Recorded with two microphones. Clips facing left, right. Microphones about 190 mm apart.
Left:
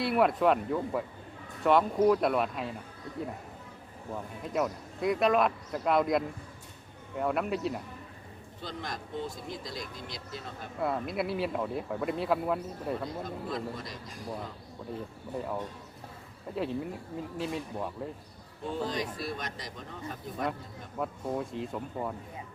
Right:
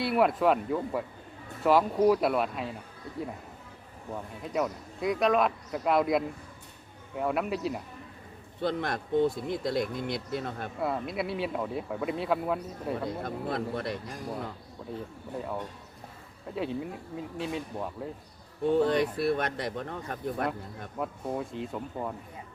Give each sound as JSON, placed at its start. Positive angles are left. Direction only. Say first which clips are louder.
{"t": 0.0, "sound": "speech", "louder": "right 1 dB", "side_deg": 0}
{"t": 4.1, "sound": "speech", "louder": "right 1 dB", "side_deg": 0}
{"t": 8.6, "sound": "speech", "louder": "right 9 dB", "side_deg": -60}
{"t": 10.8, "sound": "speech", "louder": "left 1 dB", "side_deg": 0}
{"t": 13.1, "sound": "speech", "louder": "right 3 dB", "side_deg": -60}
{"t": 15.4, "sound": "speech", "louder": "even", "side_deg": 0}
{"t": 18.8, "sound": "speech", "louder": "right 6 dB", "side_deg": -60}
{"t": 21.0, "sound": "speech", "louder": "even", "side_deg": 0}